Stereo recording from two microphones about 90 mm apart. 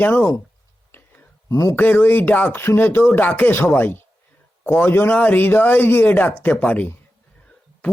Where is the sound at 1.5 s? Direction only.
35° left (ahead or behind).